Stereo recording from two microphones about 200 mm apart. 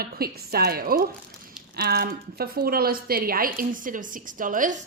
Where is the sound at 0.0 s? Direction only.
50° right (ahead or behind).